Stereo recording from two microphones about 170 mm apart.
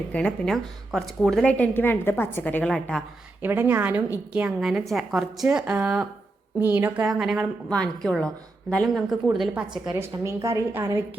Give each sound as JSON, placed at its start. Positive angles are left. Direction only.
{"t": 0.1, "sound": "a woman's voice", "side_deg": 5}
{"t": 3.4, "sound": "a woman's voice", "side_deg": -10}
{"t": 10.0, "sound": "a woman's voice", "side_deg": -15}